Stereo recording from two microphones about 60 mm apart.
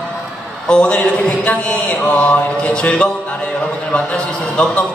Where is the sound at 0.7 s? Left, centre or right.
Centre.